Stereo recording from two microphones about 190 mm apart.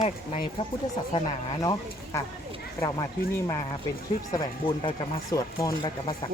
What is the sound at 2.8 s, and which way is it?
Speech, 15° left (ahead or behind).